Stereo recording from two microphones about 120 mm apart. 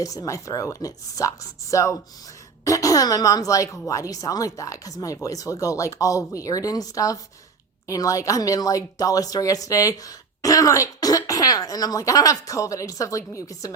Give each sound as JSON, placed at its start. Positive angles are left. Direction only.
{"t": 0.0, "sound": "a woman's voice", "side_deg": 30}